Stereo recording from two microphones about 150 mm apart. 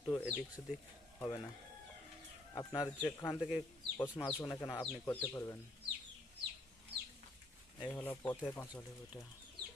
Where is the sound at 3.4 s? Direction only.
5° right (ahead or behind).